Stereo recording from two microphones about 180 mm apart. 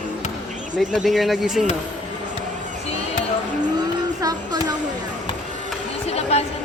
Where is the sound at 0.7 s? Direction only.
Centre (ahead or behind).